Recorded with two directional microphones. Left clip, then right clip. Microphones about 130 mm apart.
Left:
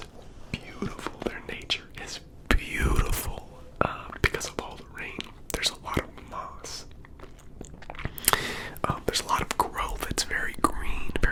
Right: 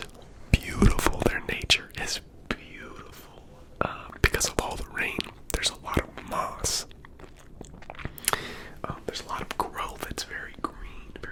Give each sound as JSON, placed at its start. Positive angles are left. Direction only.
{"t": 0.5, "sound": "whispering", "side_deg": -55}
{"t": 1.2, "sound": "whispering", "side_deg": -30}
{"t": 2.7, "sound": "whispering", "side_deg": 70}
{"t": 3.8, "sound": "whispering", "side_deg": 0}
{"t": 4.2, "sound": "whispering", "side_deg": -25}
{"t": 4.5, "sound": "whispering", "side_deg": -45}
{"t": 5.5, "sound": "whispering", "side_deg": -10}
{"t": 6.1, "sound": "whispering", "side_deg": -45}
{"t": 7.6, "sound": "whispering", "side_deg": -5}
{"t": 9.6, "sound": "whispering", "side_deg": 0}
{"t": 10.4, "sound": "whispering", "side_deg": 45}